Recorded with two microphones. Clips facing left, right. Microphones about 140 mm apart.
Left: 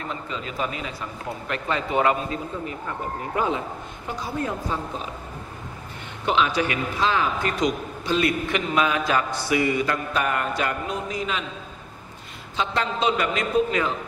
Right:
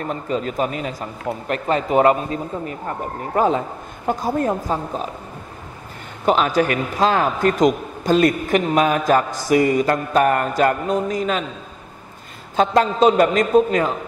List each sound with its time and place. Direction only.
0.0 s a man's voice: 45° right (ahead or behind)
6.2 s a man's voice: 45° right (ahead or behind)
12.5 s a man's voice: 45° right (ahead or behind)